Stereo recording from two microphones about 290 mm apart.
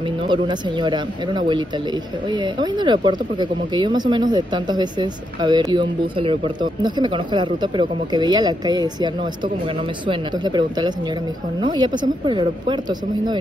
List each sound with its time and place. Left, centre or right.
0.3 s speech: centre
2.6 s speech: centre